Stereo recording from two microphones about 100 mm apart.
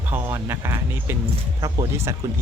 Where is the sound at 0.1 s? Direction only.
25° right (ahead or behind).